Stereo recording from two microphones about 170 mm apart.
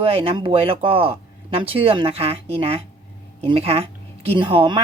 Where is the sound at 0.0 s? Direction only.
35° right (ahead or behind).